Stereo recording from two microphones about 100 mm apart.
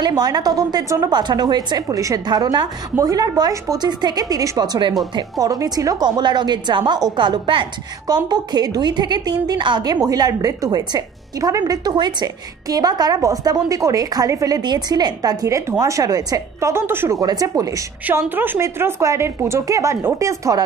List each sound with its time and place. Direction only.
0.0 s a woman's voice: 40° right (ahead or behind)
6.0 s a woman's voice: 45° right (ahead or behind)
8.1 s a woman's voice: 45° right (ahead or behind)
9.9 s speech: 40° right (ahead or behind)
16.7 s speech: 25° right (ahead or behind)
17.2 s speech: 40° right (ahead or behind)
18.3 s speech: 20° right (ahead or behind)